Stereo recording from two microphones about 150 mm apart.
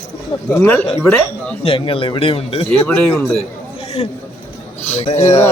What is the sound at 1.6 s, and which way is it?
A man's voice, 35° left (ahead or behind).